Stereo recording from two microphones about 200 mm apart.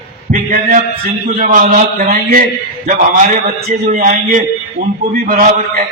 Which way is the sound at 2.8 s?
40° right (ahead or behind).